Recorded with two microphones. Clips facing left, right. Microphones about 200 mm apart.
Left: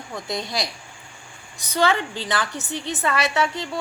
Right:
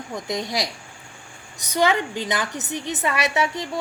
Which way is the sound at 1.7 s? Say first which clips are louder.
Right 1 dB; 15° right (ahead or behind).